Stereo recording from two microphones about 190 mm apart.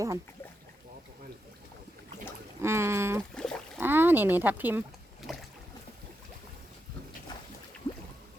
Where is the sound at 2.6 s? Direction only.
15° right (ahead or behind).